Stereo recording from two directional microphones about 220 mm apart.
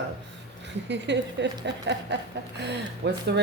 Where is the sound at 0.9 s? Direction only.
50° right (ahead or behind).